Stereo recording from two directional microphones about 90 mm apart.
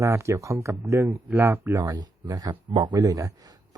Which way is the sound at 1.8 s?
45° right (ahead or behind).